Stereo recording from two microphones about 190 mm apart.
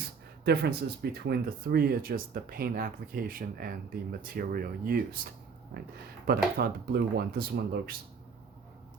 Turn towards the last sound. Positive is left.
turn(degrees=-55)  # may be behind; listen again after turning